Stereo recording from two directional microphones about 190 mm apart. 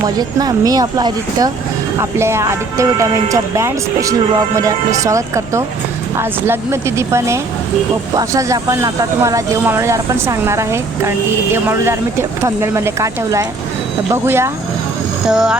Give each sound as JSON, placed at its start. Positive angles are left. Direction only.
{"t": 0.2, "sound": "speech", "side_deg": -20}
{"t": 15.3, "sound": "speech", "side_deg": -5}